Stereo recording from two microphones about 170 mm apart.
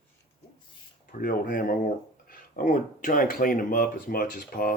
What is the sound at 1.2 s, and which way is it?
Speech, 55° left (ahead or behind).